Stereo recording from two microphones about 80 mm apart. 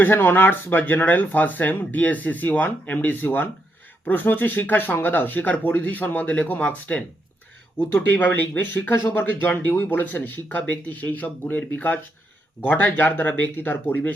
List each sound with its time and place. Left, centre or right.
0.0 s speech: left